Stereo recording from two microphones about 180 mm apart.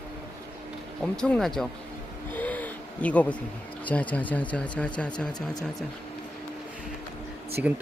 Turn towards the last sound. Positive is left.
turn(degrees=-10)  # may be behind; listen again after turning